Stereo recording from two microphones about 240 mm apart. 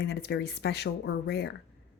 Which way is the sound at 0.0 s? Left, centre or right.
Left.